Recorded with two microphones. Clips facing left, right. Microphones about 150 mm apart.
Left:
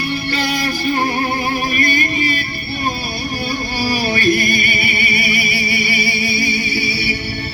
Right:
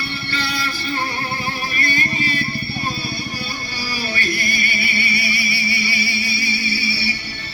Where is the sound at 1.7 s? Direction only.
15° left (ahead or behind).